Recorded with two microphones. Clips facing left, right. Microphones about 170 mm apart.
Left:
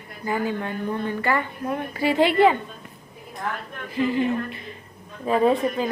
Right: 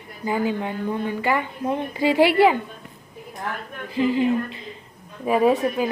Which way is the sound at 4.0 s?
15° right (ahead or behind).